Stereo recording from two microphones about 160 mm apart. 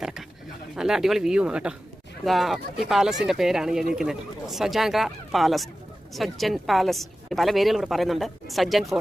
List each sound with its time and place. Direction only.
0.0 s a woman's voice: centre (ahead or behind)